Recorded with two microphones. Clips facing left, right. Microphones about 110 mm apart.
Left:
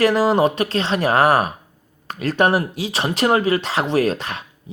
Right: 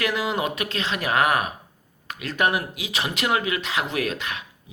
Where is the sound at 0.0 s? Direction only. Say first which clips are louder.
Left 9 dB; 35° left (ahead or behind).